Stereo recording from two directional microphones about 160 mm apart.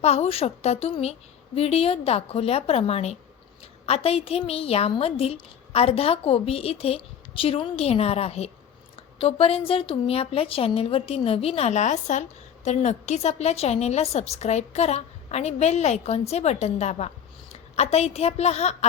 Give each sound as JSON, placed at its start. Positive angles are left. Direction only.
{"t": 0.0, "sound": "a woman's voice", "side_deg": 40}